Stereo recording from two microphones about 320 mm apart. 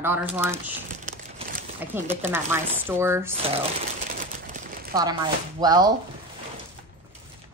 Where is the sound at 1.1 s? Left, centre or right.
Right.